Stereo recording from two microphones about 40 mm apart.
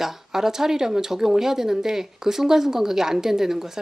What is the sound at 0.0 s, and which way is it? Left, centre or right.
A woman's voice, centre.